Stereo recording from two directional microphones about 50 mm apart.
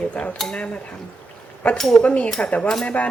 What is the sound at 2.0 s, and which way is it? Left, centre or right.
Speech, left.